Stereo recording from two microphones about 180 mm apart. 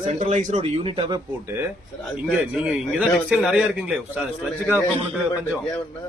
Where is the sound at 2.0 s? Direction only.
5° right (ahead or behind).